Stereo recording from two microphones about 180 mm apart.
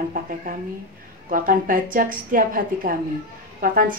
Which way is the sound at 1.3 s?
50° right (ahead or behind).